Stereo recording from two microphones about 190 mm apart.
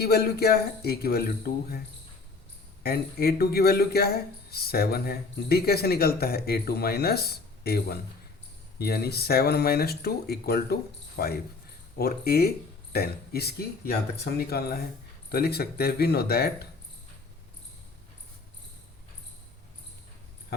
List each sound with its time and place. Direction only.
0.0 s speech: 55° left (ahead or behind)
2.8 s speech: 55° left (ahead or behind)